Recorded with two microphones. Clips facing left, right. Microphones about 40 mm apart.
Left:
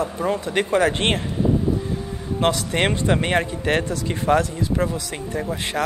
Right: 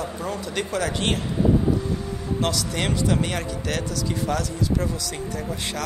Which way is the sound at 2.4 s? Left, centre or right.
Left.